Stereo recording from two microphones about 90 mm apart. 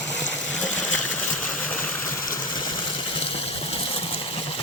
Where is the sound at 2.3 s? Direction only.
50° left (ahead or behind).